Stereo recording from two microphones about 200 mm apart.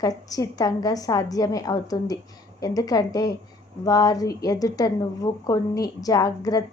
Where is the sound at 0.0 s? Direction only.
15° left (ahead or behind).